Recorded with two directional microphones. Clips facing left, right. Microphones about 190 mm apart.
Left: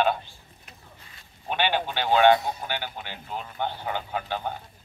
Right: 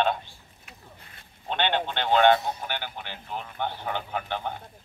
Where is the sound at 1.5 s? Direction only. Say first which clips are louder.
Left 1 dB; 10° left (ahead or behind).